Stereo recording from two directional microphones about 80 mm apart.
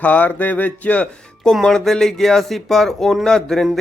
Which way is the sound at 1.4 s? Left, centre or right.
Centre.